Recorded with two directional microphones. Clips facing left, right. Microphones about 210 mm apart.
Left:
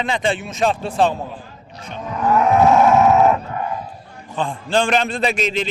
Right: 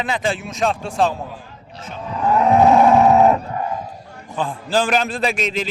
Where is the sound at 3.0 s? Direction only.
35° right (ahead or behind).